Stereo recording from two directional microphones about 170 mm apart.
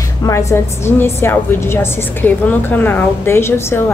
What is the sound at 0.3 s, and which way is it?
A woman's voice, 20° left (ahead or behind).